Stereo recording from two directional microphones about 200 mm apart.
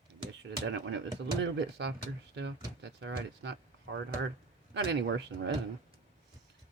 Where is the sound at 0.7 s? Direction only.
65° right (ahead or behind).